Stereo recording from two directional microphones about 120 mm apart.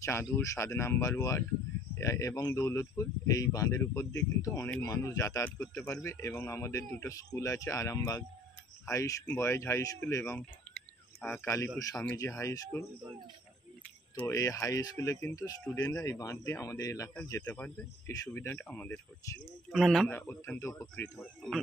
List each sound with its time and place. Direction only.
0.0 s a man's voice: 25° left (ahead or behind)
11.4 s a man's voice: 20° left (ahead or behind)
14.3 s a man's voice: 25° left (ahead or behind)
17.4 s speech: 10° left (ahead or behind)
18.0 s speech: 25° left (ahead or behind)
19.7 s speech: centre (ahead or behind)
20.1 s speech: 20° left (ahead or behind)